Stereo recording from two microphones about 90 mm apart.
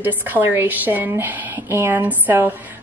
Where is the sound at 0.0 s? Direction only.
20° right (ahead or behind).